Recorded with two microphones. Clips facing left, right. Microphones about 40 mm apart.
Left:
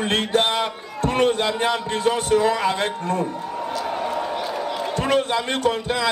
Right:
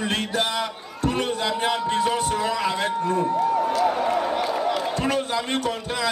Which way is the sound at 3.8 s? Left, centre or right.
Centre.